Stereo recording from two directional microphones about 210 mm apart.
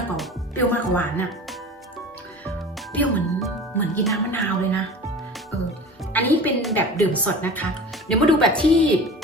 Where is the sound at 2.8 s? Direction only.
5° left (ahead or behind).